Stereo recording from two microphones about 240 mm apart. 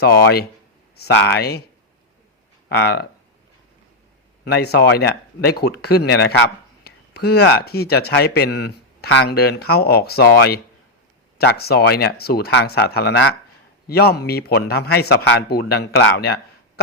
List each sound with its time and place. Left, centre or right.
0.0 s speech: left
2.6 s speech: left
4.4 s speech: left